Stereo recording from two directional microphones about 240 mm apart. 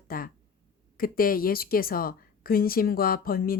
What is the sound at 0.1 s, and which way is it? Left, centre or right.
A woman's voice, left.